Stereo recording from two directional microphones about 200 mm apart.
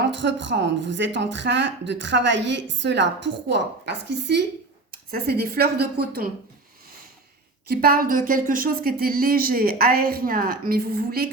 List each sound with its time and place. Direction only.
0.1 s speech: 65° right (ahead or behind)
7.7 s speech: 50° right (ahead or behind)